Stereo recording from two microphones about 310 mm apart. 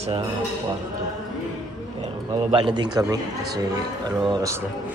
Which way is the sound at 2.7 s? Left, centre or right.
Centre.